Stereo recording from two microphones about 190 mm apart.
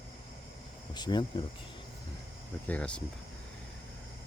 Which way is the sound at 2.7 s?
5° left (ahead or behind).